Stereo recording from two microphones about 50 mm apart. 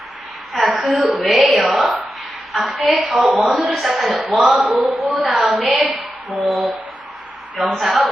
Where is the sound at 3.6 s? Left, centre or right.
Centre.